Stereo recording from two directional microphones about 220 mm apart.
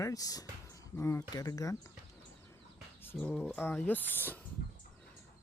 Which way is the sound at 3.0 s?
10° left (ahead or behind).